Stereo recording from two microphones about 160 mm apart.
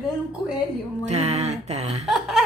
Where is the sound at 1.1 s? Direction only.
45° right (ahead or behind).